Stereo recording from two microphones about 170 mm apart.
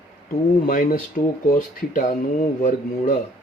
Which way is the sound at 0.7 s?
55° left (ahead or behind).